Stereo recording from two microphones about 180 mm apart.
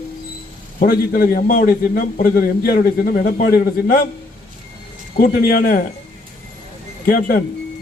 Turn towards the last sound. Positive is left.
turn(degrees=55)  # may be behind; listen again after turning